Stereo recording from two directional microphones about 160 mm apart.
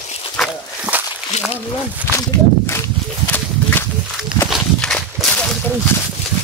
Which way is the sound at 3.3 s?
10° left (ahead or behind).